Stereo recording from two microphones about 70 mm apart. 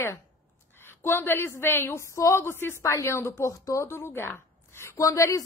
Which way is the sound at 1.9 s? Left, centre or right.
Left.